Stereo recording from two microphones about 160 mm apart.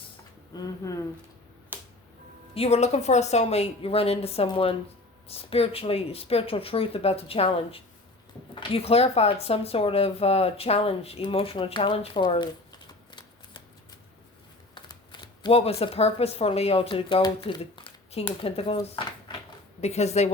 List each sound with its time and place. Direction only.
0.5 s speech: 25° left (ahead or behind)
1.7 s finger snapping: 10° right (ahead or behind)
2.6 s speech: 40° left (ahead or behind)